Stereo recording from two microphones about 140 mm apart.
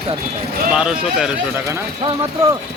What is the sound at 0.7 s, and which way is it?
Speech, 5° right (ahead or behind).